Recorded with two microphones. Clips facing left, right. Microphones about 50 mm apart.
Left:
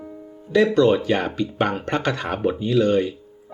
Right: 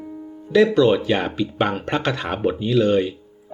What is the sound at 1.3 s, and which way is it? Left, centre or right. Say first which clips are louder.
Speech: right 1 dB; centre.